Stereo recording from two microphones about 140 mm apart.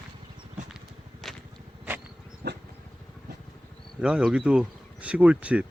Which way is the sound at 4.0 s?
5° right (ahead or behind).